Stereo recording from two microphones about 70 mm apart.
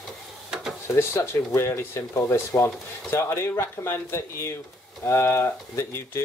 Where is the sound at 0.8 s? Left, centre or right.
Left.